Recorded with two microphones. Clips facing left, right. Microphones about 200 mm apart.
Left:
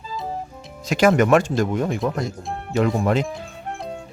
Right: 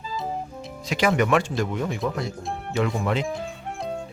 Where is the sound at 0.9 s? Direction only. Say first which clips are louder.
Left 5 dB; 45° left (ahead or behind).